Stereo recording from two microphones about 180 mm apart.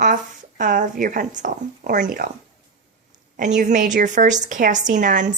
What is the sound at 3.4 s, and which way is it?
Speech, 45° right (ahead or behind).